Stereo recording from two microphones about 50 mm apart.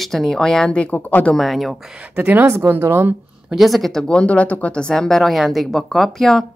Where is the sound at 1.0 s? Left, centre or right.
Left.